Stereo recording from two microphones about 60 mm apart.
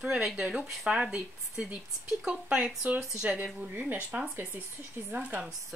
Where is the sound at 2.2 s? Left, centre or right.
Centre.